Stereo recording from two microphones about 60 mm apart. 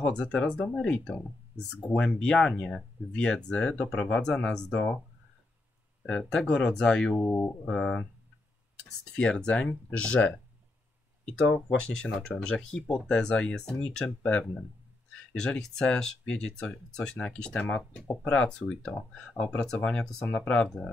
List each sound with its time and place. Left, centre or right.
0.0 s speech: centre
6.0 s speech: centre
7.2 s speech: left
7.6 s speech: centre
11.8 s speech: centre